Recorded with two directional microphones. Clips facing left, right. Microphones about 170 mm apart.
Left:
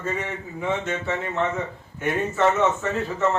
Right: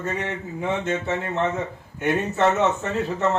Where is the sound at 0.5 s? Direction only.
20° right (ahead or behind).